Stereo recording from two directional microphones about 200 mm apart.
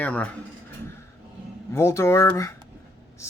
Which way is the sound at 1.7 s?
15° left (ahead or behind).